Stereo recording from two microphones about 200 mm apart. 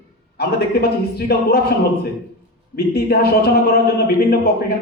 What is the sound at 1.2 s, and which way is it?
A man's voice, 50° left (ahead or behind).